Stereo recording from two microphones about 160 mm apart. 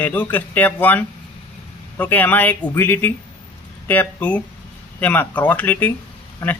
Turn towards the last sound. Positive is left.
turn(degrees=10)  # may be behind; listen again after turning